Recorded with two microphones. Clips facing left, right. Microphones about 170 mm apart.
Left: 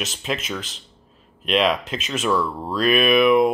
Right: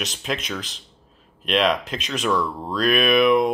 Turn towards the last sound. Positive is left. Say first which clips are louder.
# left 1 dB
turn(degrees=5)  # may be behind; listen again after turning